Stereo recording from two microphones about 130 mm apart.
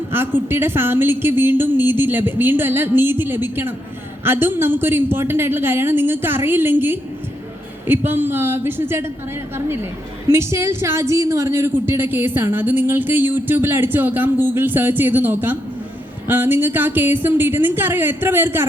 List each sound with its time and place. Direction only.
0.1 s a woman's voice: 15° right (ahead or behind)